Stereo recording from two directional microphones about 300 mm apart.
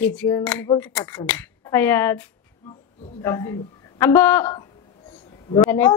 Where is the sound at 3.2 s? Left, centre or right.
Centre.